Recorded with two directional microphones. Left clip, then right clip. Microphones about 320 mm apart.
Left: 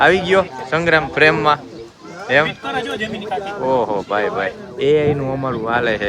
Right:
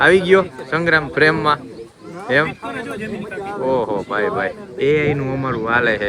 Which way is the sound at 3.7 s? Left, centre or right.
Centre.